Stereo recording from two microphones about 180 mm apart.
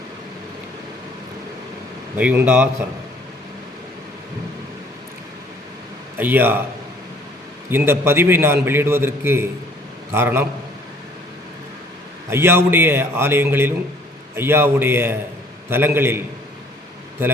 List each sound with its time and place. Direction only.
2.1 s a man's voice: 10° right (ahead or behind)
6.1 s a man's voice: 10° right (ahead or behind)
7.7 s a man's voice: 10° right (ahead or behind)
12.3 s a man's voice: 15° right (ahead or behind)